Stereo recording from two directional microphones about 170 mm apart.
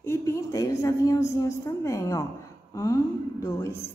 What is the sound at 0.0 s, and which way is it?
A woman's voice, 15° left (ahead or behind).